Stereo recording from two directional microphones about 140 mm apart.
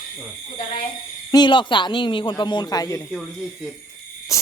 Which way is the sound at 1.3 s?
30° left (ahead or behind).